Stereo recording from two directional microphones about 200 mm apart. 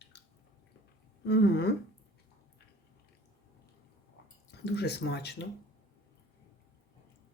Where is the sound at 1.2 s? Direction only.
55° left (ahead or behind).